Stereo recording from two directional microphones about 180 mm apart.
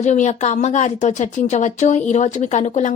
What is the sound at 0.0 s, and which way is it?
Speech, 40° left (ahead or behind).